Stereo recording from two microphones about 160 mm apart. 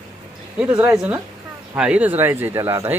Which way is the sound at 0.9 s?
10° right (ahead or behind).